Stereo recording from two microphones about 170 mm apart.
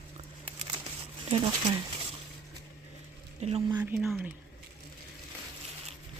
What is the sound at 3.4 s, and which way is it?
Speech, 40° right (ahead or behind).